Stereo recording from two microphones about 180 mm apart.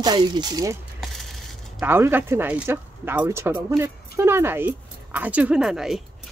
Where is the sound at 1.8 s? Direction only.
10° right (ahead or behind).